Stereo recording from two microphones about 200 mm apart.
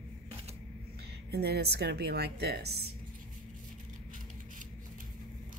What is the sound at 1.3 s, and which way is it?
Speech, 55° right (ahead or behind).